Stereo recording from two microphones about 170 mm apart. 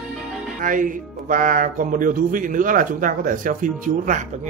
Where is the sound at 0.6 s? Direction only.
50° right (ahead or behind).